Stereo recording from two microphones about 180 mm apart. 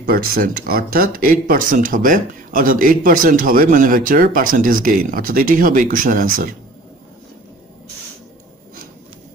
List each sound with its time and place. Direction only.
0.0 s speech: 55° right (ahead or behind)